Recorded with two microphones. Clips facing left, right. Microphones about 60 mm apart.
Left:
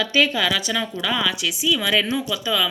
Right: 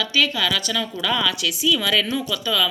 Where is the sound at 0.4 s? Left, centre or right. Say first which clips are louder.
Left 1 dB; centre.